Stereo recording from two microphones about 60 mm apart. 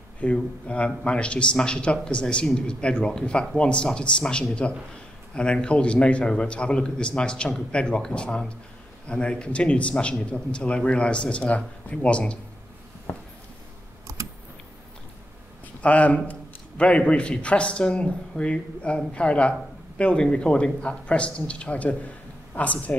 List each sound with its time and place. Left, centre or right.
0.2 s a man's voice: centre
14.1 s typing: right
15.8 s speech: left